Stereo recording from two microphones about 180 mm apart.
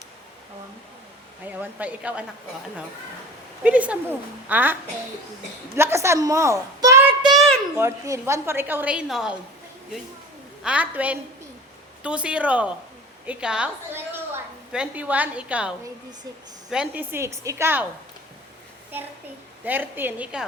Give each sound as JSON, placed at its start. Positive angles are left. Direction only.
{"t": 1.5, "sound": "a woman's voice", "side_deg": -10}
{"t": 3.6, "sound": "a woman's voice", "side_deg": -10}
{"t": 7.3, "sound": "a sound", "side_deg": 5}
{"t": 7.8, "sound": "a woman's voice", "side_deg": -15}
{"t": 10.6, "sound": "a woman's voice", "side_deg": -5}
{"t": 19.6, "sound": "a woman's voice", "side_deg": -10}